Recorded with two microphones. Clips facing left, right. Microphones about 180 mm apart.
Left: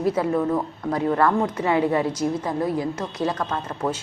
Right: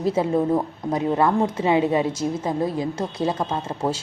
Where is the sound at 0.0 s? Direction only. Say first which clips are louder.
Right 1 dB; 25° right (ahead or behind).